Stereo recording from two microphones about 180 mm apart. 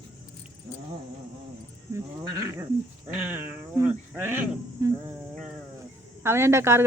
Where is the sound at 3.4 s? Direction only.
10° right (ahead or behind).